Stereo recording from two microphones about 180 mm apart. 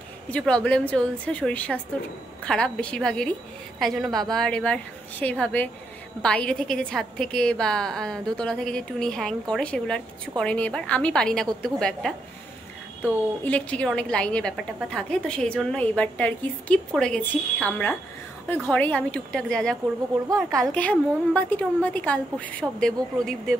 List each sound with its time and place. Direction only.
0.3 s a woman's voice: 5° left (ahead or behind)
13.5 s a woman's voice: 5° left (ahead or behind)
20.2 s a woman's voice: 20° right (ahead or behind)
20.6 s a woman's voice: 10° left (ahead or behind)